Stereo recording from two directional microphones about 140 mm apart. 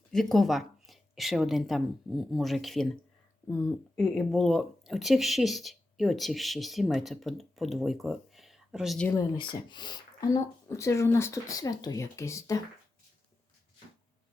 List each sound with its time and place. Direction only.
0.1 s speech: 5° left (ahead or behind)
9.1 s speech: 30° left (ahead or behind)